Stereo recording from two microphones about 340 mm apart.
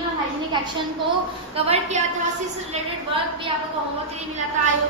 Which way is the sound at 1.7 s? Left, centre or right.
Centre.